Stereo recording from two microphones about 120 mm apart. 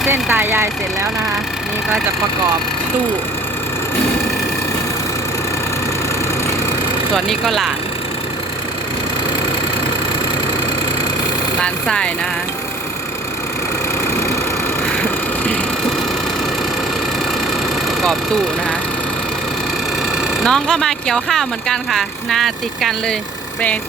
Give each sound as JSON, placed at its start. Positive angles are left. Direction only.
{"t": 0.1, "sound": "speech", "side_deg": -15}
{"t": 7.3, "sound": "speech", "side_deg": 0}
{"t": 11.6, "sound": "speech", "side_deg": 5}
{"t": 15.0, "sound": "a sound", "side_deg": 10}
{"t": 20.4, "sound": "speech", "side_deg": 5}